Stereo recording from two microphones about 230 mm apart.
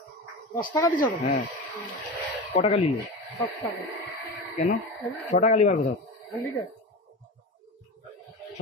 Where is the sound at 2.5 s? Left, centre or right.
Left.